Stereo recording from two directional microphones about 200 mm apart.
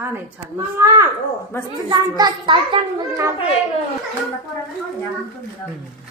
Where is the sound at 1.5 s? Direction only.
10° left (ahead or behind).